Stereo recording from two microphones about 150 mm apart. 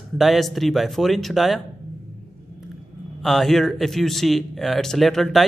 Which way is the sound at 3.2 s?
Centre (ahead or behind).